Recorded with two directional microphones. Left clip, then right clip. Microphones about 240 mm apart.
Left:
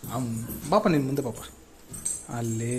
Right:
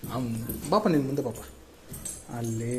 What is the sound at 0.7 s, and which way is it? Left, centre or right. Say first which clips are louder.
Speech: left 2 dB; left.